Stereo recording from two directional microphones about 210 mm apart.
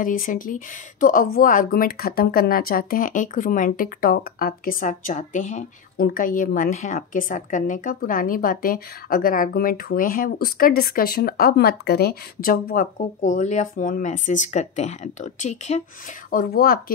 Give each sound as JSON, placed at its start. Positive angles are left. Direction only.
{"t": 0.0, "sound": "speech", "side_deg": 40}
{"t": 16.3, "sound": "speech", "side_deg": 45}